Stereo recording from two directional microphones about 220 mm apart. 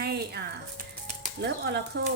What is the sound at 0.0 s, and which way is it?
Music, 45° right (ahead or behind).